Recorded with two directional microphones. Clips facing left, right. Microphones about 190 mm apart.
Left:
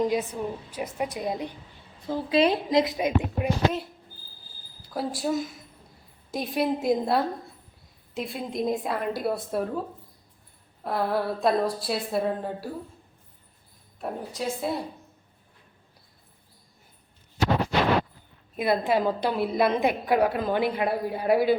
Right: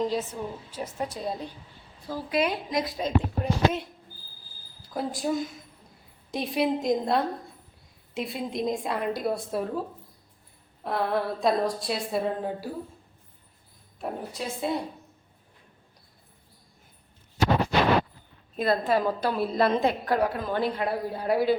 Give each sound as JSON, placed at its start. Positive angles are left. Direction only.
{"t": 0.0, "sound": "a woman's voice", "side_deg": 15}
{"t": 4.9, "sound": "a woman's voice", "side_deg": 5}
{"t": 10.8, "sound": "a woman's voice", "side_deg": 0}
{"t": 14.0, "sound": "a woman's voice", "side_deg": 0}
{"t": 18.5, "sound": "a woman's voice", "side_deg": 10}